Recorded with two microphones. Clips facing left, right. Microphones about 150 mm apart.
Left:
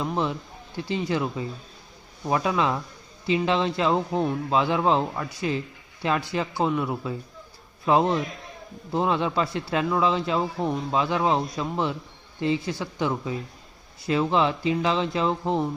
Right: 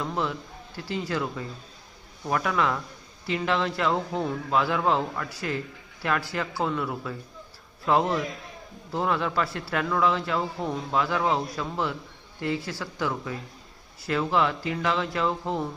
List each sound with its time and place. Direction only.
0.0 s a man's voice: 20° left (ahead or behind)